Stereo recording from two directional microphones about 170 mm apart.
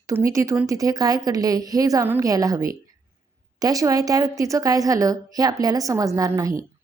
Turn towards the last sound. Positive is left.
turn(degrees=-20)  # may be behind; listen again after turning